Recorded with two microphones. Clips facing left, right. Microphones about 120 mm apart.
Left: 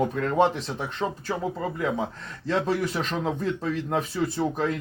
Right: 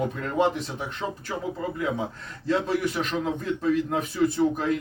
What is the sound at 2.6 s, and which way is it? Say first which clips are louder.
A man's voice: even; 35° left (ahead or behind).